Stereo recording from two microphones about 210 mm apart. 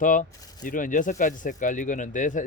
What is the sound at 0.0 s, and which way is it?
Speech, 40° left (ahead or behind).